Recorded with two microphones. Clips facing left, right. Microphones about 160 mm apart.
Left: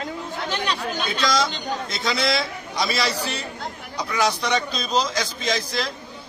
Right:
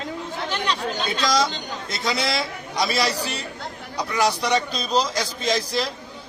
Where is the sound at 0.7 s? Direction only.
15° right (ahead or behind).